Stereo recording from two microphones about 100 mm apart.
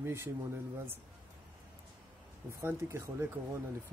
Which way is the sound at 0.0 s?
25° right (ahead or behind).